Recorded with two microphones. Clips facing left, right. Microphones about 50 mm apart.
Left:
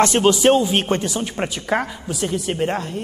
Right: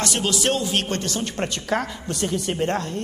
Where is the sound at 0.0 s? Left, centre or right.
Left.